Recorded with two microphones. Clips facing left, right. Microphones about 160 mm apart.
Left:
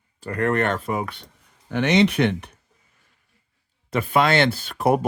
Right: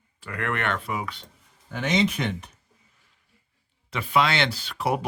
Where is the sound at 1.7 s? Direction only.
70° left (ahead or behind).